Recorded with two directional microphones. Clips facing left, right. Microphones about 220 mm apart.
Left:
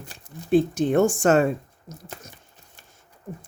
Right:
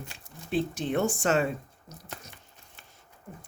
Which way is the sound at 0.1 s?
45° left (ahead or behind).